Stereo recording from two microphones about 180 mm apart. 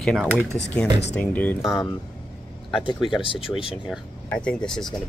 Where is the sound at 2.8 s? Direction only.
30° left (ahead or behind).